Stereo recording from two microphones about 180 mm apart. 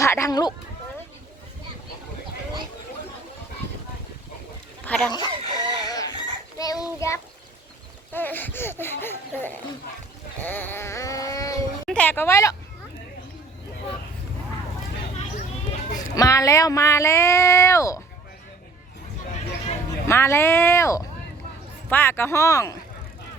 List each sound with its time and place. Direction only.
0.0 s a sound: 15° left (ahead or behind)
4.9 s speech: 5° left (ahead or behind)
5.1 s chicken: 20° left (ahead or behind)
6.6 s child singing: 20° left (ahead or behind)
8.1 s speech: 10° left (ahead or behind)
10.4 s a sound: 10° left (ahead or behind)
11.9 s speech: 10° left (ahead or behind)
16.0 s speech: 20° left (ahead or behind)
20.1 s speech: 15° left (ahead or behind)